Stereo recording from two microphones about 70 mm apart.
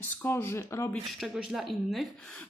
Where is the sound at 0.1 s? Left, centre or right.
Left.